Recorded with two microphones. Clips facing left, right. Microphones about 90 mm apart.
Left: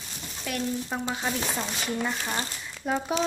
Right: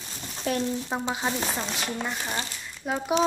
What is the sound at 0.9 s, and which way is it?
Speech, 15° right (ahead or behind).